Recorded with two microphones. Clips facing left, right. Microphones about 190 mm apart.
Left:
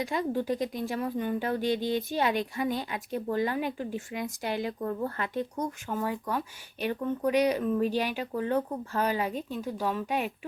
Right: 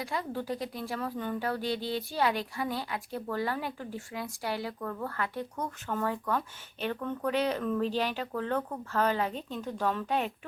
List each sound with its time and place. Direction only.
0.0 s a woman's voice: 20° left (ahead or behind)